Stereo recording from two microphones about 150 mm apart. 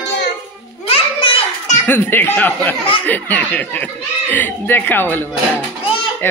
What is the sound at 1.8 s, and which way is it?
Speech, 15° left (ahead or behind).